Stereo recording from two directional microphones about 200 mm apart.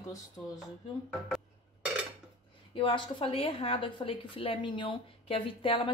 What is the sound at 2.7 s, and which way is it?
A woman's voice, 25° left (ahead or behind).